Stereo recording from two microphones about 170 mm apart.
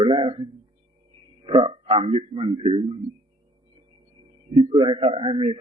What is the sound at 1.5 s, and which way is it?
A man's voice, 30° right (ahead or behind).